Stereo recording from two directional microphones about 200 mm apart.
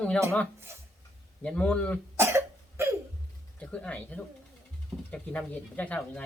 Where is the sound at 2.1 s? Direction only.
15° right (ahead or behind).